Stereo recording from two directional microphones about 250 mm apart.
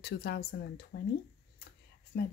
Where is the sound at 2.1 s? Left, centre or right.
Left.